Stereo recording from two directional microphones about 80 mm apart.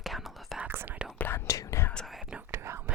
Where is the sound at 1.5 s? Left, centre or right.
Left.